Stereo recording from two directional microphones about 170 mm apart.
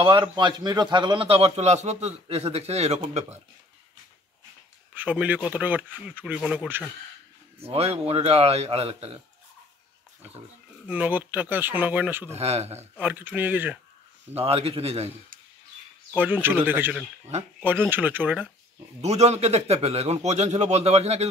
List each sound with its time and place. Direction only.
0.0 s a man's voice: 25° right (ahead or behind)
4.9 s speech: 10° right (ahead or behind)
7.6 s a man's voice: 35° right (ahead or behind)
10.9 s speech: 10° right (ahead or behind)
12.3 s a man's voice: 40° right (ahead or behind)
13.0 s speech: 10° right (ahead or behind)
14.3 s a man's voice: 35° right (ahead or behind)
16.2 s speech: 10° right (ahead or behind)
18.9 s a man's voice: 40° right (ahead or behind)